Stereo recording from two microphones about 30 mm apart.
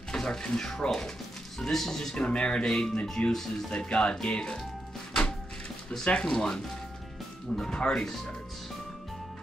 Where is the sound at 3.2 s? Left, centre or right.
Left.